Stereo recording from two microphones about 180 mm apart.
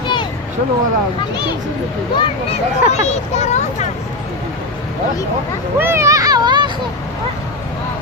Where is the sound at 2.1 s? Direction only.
35° left (ahead or behind).